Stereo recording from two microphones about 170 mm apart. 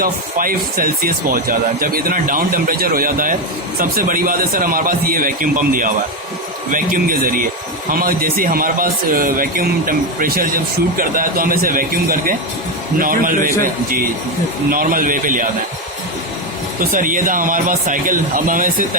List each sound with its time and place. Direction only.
0.0 s speech: 55° right (ahead or behind)
16.9 s speech: 50° right (ahead or behind)